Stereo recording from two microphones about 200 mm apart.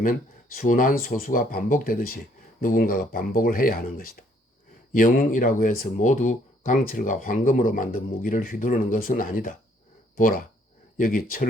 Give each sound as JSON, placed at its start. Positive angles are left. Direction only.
{"t": 0.5, "sound": "speech", "side_deg": 45}